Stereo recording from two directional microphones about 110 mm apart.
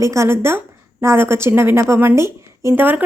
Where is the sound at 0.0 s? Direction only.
25° right (ahead or behind).